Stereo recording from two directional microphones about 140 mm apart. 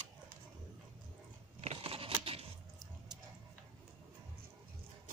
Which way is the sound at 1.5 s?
45° right (ahead or behind).